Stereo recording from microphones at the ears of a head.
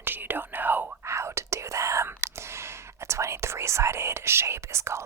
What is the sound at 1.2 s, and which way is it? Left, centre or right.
Whispering, right.